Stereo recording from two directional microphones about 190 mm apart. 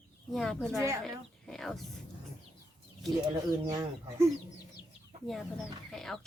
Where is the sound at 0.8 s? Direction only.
15° right (ahead or behind).